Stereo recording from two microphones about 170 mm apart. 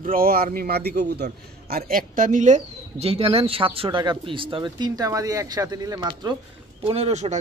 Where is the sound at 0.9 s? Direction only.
80° right.